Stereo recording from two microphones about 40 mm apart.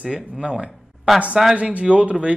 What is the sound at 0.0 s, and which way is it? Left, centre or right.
Speech, centre.